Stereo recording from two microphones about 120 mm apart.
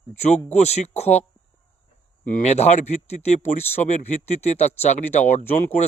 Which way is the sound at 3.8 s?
80° left.